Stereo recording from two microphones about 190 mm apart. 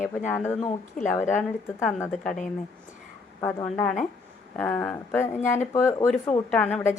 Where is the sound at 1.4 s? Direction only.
5° left (ahead or behind).